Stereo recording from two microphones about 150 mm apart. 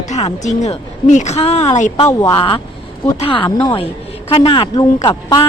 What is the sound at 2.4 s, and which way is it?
A woman's voice, 35° left (ahead or behind).